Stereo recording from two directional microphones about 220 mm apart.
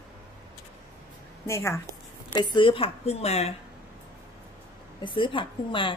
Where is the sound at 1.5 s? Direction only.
10° left (ahead or behind); by 3.5 s 30° left (ahead or behind).